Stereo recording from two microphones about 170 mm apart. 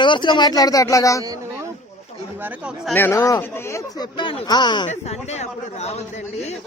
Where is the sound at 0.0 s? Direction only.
25° left (ahead or behind).